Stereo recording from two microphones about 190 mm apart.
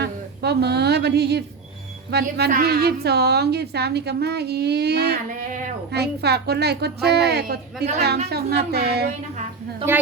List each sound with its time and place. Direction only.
0.0 s a woman's voice: 60° right (ahead or behind); by 5.7 s 40° right (ahead or behind)
5.9 s a woman's voice: 60° right (ahead or behind)